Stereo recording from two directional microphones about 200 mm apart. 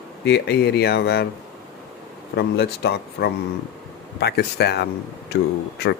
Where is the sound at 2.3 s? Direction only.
55° left (ahead or behind).